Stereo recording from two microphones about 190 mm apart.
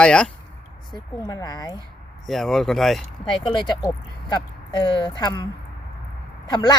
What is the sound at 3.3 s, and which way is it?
Speech, 25° left (ahead or behind).